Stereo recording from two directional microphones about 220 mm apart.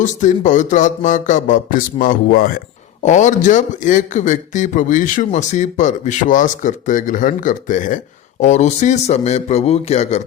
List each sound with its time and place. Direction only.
0.0 s speech: 35° left (ahead or behind)